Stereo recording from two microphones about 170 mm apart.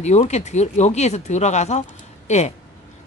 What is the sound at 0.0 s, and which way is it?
Speech, 40° left (ahead or behind).